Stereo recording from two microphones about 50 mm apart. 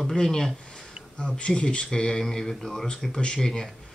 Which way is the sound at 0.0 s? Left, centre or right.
Centre.